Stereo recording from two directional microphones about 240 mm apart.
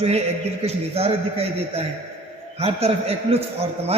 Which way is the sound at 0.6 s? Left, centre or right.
Right.